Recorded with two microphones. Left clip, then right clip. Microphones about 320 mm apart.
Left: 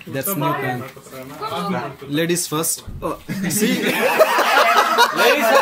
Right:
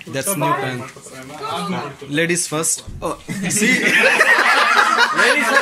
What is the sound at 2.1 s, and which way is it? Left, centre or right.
Speech, centre.